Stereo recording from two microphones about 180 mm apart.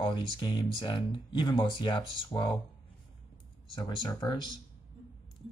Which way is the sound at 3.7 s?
25° left (ahead or behind).